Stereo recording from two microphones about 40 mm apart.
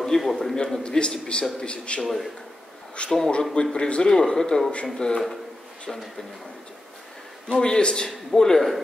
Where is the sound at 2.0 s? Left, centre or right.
Centre.